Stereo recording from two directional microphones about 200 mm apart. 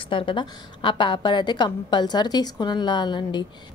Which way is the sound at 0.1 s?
25° left (ahead or behind).